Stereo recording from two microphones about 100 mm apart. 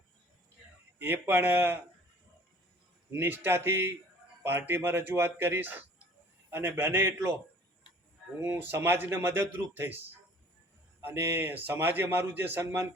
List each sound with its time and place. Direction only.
0.9 s a man's voice: 20° right (ahead or behind)
3.1 s a man's voice: 25° right (ahead or behind)
8.4 s a man's voice: 25° right (ahead or behind)
11.0 s a man's voice: 25° right (ahead or behind)